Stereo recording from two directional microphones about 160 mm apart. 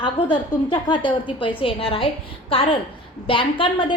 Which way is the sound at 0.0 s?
25° left (ahead or behind).